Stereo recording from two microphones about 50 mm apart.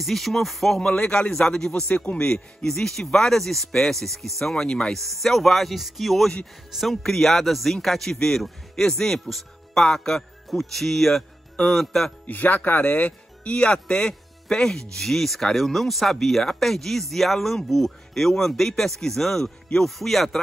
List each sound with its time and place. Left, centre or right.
0.0 s speech: centre
0.7 s a man's voice: centre
1.9 s a man's voice: left
4.9 s a man's voice: centre
12.3 s a man's voice: left; by 19.9 s centre
20.0 s speech: centre